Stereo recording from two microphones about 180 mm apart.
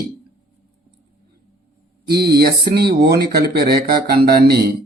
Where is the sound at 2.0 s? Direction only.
60° right (ahead or behind).